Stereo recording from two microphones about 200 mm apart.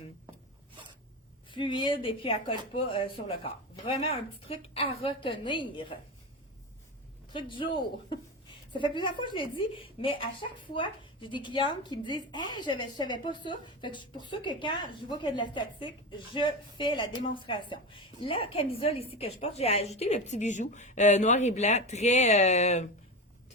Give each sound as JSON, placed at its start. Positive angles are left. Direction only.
{"t": 1.5, "sound": "a woman's voice", "side_deg": 25}
{"t": 7.3, "sound": "a woman's voice", "side_deg": 25}